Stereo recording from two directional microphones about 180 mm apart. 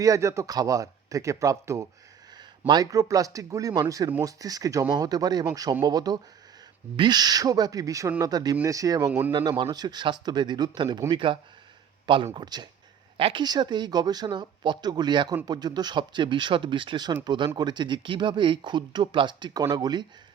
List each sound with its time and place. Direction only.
0.0 s speech: 15° right (ahead or behind)
9.3 s speech: 25° right (ahead or behind)